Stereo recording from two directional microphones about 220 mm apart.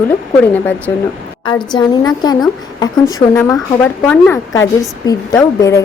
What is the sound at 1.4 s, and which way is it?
Speech, 20° left (ahead or behind).